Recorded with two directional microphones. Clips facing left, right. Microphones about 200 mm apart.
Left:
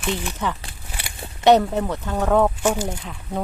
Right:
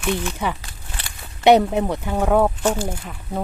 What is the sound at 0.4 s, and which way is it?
Speech, 10° right (ahead or behind).